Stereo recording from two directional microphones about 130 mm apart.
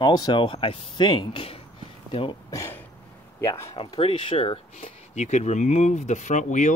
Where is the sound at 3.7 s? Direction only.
40° left (ahead or behind).